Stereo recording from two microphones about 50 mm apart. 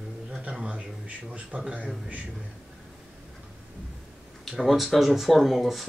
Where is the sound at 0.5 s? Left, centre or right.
Centre.